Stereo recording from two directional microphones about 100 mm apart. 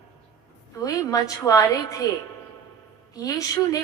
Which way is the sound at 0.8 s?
35° left (ahead or behind).